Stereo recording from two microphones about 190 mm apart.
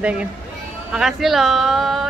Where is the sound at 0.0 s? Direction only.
5° right (ahead or behind).